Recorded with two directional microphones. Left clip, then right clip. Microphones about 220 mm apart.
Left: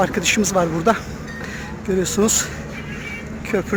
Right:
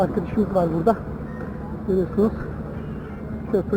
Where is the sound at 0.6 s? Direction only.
50° left (ahead or behind).